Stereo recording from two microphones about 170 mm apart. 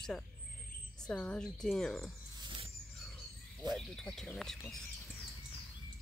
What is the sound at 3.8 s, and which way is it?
Speech, centre (ahead or behind).